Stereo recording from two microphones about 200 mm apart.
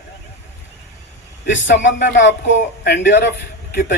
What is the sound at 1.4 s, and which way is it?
A man's voice, 65° left (ahead or behind).